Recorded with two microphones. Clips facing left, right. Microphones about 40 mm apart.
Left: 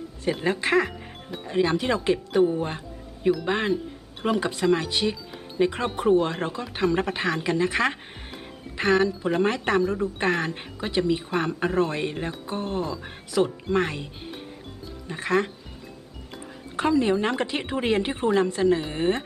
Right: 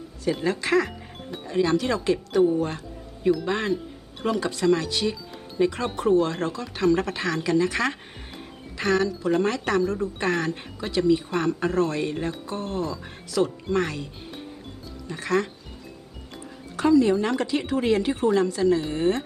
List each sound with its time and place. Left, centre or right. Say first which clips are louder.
0.4 s a woman's voice: left 1 dB; left